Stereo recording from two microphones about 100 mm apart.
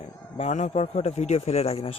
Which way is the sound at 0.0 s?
90° left.